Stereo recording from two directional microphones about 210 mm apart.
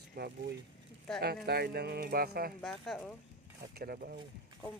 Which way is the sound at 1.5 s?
50° right (ahead or behind).